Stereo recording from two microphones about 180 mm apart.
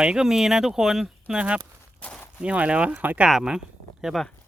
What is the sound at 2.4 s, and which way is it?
Speech, 5° right (ahead or behind).